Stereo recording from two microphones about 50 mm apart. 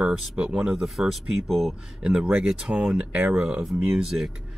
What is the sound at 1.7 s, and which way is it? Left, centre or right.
A man's voice, centre.